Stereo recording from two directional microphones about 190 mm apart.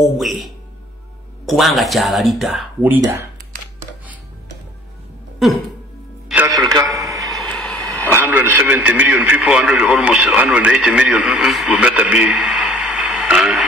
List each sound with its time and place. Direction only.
0.0 s speech: centre (ahead or behind)
6.2 s music: 5° right (ahead or behind)
6.6 s a man's voice: 20° right (ahead or behind)
7.0 s a sound: 15° right (ahead or behind)
7.2 s a sound: centre (ahead or behind)
8.1 s a man's voice: 10° right (ahead or behind)